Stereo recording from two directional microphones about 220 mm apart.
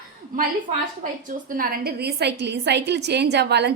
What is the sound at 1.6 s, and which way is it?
A woman's voice, 45° right (ahead or behind).